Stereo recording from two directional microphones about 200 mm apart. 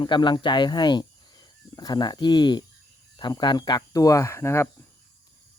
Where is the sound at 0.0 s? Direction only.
25° left (ahead or behind).